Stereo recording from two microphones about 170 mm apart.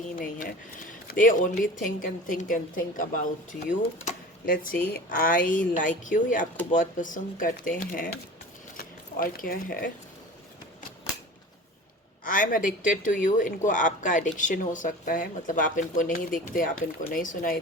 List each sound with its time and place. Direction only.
0.0 s speech: 50° left (ahead or behind)
8.7 s a sound: 55° left (ahead or behind)
12.2 s speech: 55° left (ahead or behind)